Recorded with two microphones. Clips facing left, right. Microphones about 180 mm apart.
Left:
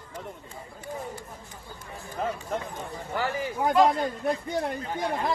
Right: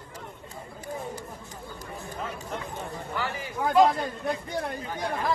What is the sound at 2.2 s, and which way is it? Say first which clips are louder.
Speech: left 6 dB; 55° left (ahead or behind).